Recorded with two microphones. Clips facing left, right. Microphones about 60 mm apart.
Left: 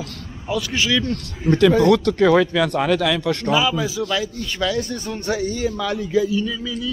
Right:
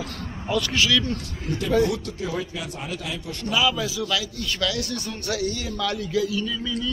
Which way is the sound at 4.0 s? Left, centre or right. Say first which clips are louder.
Left 4 dB; left.